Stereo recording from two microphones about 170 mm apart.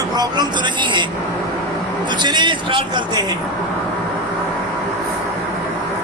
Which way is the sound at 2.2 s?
25° right (ahead or behind).